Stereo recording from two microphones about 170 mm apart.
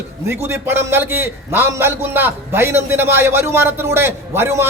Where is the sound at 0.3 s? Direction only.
15° right (ahead or behind).